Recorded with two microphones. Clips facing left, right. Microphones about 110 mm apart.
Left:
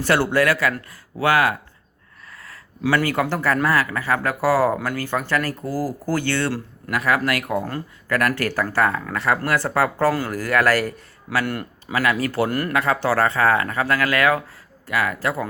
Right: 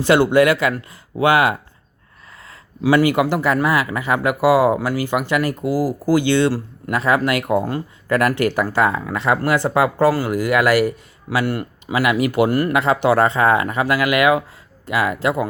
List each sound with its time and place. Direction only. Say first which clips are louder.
0.0 s speech: right 5 dB; 15° right (ahead or behind)
2.8 s speech: right 5 dB; 15° right (ahead or behind)
12.8 s speech: right 3 dB; 20° right (ahead or behind)